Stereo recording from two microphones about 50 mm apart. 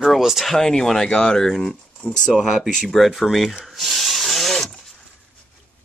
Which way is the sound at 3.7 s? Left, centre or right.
Centre.